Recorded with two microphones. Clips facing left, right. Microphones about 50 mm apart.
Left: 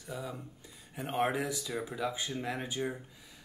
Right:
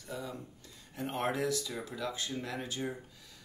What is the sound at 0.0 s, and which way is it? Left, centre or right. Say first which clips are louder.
Speech: left 1 dB; centre.